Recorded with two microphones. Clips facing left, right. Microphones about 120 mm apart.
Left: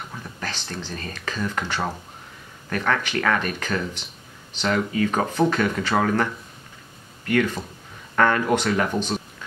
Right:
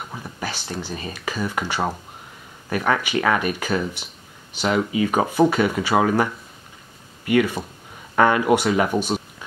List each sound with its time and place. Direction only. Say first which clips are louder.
0.1 s speech: right 3 dB; 10° right (ahead or behind)